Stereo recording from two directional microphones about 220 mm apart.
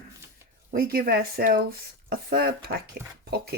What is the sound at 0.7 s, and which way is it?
Speech, 40° right (ahead or behind).